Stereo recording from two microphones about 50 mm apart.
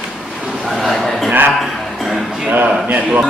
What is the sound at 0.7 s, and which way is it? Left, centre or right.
Speech, centre.